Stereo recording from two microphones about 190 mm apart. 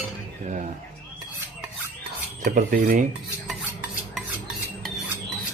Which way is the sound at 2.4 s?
45° right (ahead or behind).